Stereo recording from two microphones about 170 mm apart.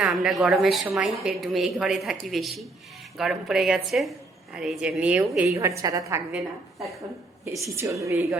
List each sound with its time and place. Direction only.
0.0 s a woman's voice: centre (ahead or behind)
5.5 s a woman's voice: 20° right (ahead or behind)
7.8 s a woman's voice: 20° right (ahead or behind)